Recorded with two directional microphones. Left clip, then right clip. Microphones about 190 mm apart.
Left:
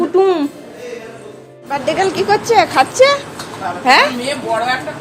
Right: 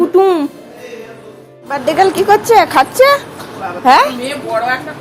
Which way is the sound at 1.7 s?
30° right (ahead or behind).